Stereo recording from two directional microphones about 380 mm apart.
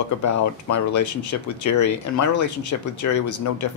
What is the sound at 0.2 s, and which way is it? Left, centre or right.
Speech, left.